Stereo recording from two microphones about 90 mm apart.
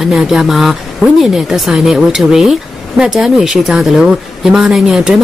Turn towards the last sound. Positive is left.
turn(degrees=-5)  # may be behind; listen again after turning